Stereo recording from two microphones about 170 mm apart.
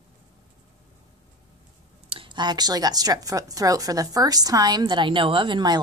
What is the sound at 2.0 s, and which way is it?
Speech, 30° right (ahead or behind).